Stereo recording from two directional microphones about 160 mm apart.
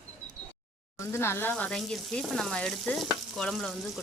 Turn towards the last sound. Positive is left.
turn(degrees=0)  # may be behind; listen again after turning